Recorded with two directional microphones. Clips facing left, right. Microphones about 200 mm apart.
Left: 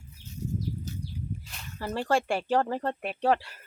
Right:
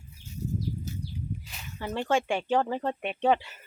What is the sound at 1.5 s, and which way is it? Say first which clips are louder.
Speech: left 2 dB; centre (ahead or behind).